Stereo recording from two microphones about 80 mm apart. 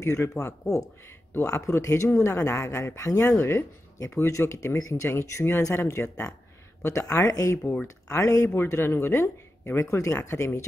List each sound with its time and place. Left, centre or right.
0.0 s speech: left
1.4 s speech: left
8.5 s speech: left